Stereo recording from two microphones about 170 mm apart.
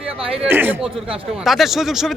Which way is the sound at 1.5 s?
Centre (ahead or behind).